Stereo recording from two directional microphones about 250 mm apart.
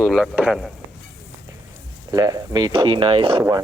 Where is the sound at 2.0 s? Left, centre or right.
Centre.